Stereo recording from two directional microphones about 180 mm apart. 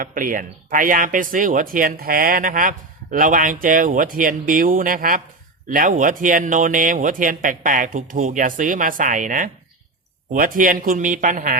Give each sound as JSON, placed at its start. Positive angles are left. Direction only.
{"t": 0.0, "sound": "speech", "side_deg": -50}